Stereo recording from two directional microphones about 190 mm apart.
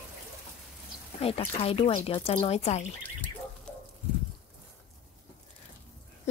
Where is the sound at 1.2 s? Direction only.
30° left (ahead or behind).